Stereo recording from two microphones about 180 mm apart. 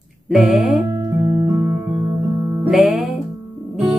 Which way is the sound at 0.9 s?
20° right (ahead or behind).